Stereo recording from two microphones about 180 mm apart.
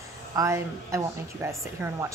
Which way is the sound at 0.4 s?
15° right (ahead or behind).